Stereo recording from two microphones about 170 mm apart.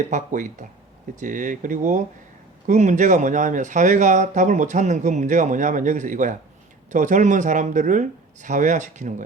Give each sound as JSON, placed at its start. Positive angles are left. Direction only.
{"t": 0.1, "sound": "speech", "side_deg": -45}